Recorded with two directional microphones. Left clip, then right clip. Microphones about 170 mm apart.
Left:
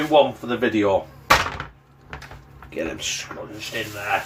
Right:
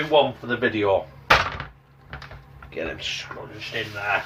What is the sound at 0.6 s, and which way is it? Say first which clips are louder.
Speech: left 2 dB; 60° left (ahead or behind).